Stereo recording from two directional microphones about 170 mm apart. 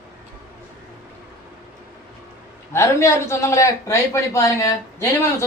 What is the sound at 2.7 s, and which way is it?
Speech, 15° left (ahead or behind).